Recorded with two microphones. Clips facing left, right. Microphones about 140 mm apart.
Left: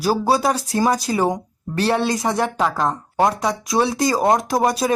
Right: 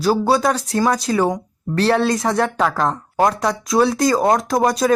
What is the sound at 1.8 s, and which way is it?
Speech, centre (ahead or behind).